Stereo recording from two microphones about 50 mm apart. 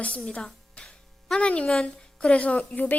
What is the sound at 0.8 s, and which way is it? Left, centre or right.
Music, left.